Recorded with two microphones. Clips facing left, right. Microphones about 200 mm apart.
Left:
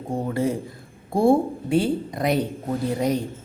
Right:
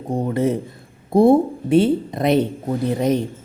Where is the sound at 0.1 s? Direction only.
20° right (ahead or behind).